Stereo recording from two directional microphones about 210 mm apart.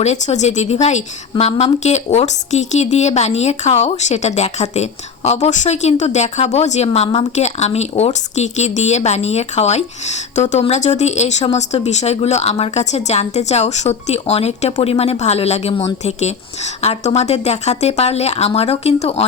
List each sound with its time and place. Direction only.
0.0 s a woman's voice: 30° left (ahead or behind)